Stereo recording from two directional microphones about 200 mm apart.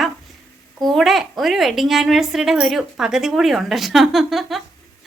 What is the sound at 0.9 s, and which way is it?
Speech, centre (ahead or behind).